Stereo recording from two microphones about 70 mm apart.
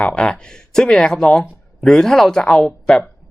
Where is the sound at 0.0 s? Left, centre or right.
Centre.